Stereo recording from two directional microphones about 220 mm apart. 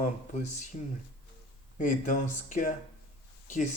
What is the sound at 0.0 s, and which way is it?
Speech, 35° left (ahead or behind).